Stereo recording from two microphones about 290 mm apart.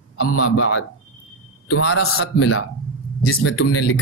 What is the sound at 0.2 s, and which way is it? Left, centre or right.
Speech, left.